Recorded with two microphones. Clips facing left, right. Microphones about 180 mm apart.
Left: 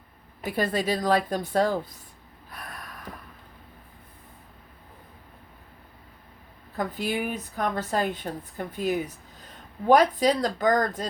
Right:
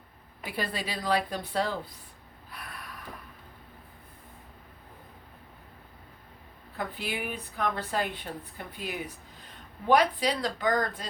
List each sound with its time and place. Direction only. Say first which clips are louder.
0.4 s a woman's voice: left 8 dB; 45° left (ahead or behind)
2.5 s snort: left 3 dB; 45° left (ahead or behind)
6.7 s a woman's voice: left 6 dB; 45° left (ahead or behind)